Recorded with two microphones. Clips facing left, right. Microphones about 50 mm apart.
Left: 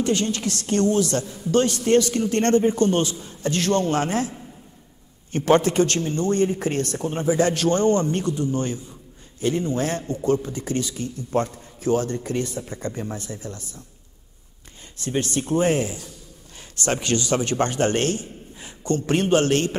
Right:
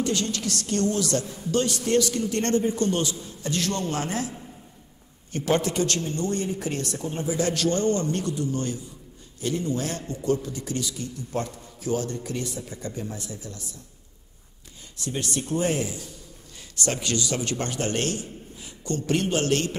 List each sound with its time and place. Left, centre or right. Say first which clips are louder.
0.0 s a woman's voice: left 4 dB; left
5.3 s a woman's voice: left 6 dB; left
15.0 s a woman's voice: left 5 dB; left